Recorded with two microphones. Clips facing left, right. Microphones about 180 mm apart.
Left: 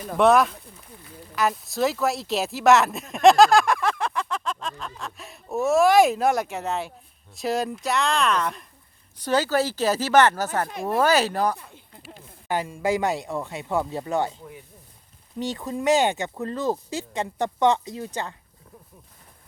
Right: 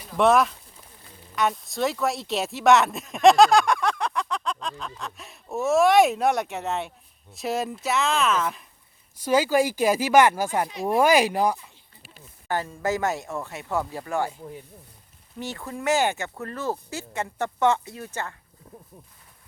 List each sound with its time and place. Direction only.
0.2 s speech: centre (ahead or behind)
11.5 s a sound: 65° left (ahead or behind)
12.5 s speech: 15° left (ahead or behind)
15.4 s speech: 20° left (ahead or behind)